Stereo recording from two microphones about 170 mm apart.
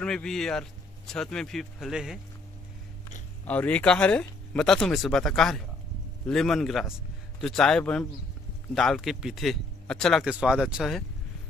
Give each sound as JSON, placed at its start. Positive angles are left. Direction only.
{"t": 0.0, "sound": "speech", "side_deg": 5}
{"t": 3.4, "sound": "speech", "side_deg": 10}